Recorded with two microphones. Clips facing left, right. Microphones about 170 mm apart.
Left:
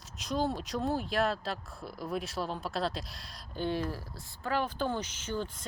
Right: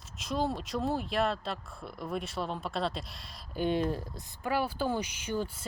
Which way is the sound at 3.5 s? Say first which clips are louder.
Right 4 dB; 15° right (ahead or behind).